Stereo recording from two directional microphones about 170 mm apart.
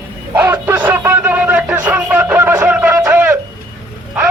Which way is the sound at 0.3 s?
15° right (ahead or behind).